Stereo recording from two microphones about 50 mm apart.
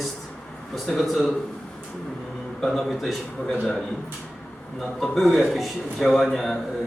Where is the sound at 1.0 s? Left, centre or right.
Centre.